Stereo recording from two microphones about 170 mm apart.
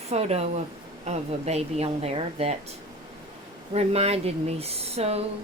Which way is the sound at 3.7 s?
35° right (ahead or behind).